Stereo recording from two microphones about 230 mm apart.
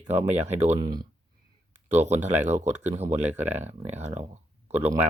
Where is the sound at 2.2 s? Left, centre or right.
Right.